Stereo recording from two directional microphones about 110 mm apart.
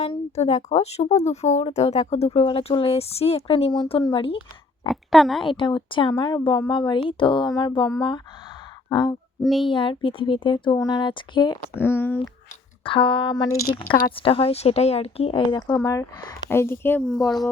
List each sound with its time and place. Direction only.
0.0 s speech: 65° left (ahead or behind)
2.4 s speech: 60° left (ahead or behind)
4.9 s speech: centre (ahead or behind)
5.5 s speech: 50° left (ahead or behind)
8.9 s speech: 40° left (ahead or behind)
9.4 s speech: centre (ahead or behind)
9.6 s speech: 50° left (ahead or behind)
10.8 s speech: 35° left (ahead or behind)
11.7 s speech: 20° left (ahead or behind)
12.8 s speech: 50° left (ahead or behind)
13.3 s speech: 35° left (ahead or behind)
13.9 s speech: 55° left (ahead or behind)
15.5 s speech: 35° left (ahead or behind); by 17.0 s 20° left (ahead or behind)
17.1 s speech: centre (ahead or behind)